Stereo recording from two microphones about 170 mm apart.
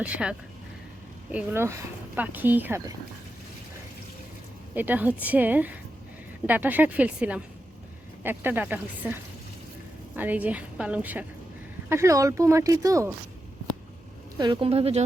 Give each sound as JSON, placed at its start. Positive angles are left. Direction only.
{"t": 0.0, "sound": "speech", "side_deg": -5}
{"t": 4.7, "sound": "speech", "side_deg": -10}
{"t": 10.2, "sound": "speech", "side_deg": -10}
{"t": 14.3, "sound": "speech", "side_deg": -25}